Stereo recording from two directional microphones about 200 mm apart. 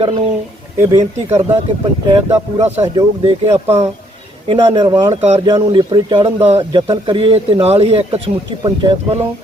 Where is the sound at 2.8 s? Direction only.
20° right (ahead or behind).